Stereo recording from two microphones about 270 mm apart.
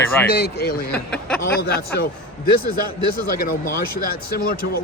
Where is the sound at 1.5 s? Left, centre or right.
Left.